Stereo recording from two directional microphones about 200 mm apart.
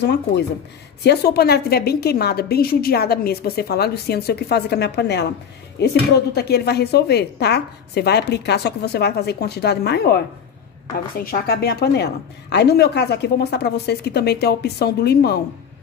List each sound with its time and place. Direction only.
0.0 s a woman's voice: 55° left (ahead or behind)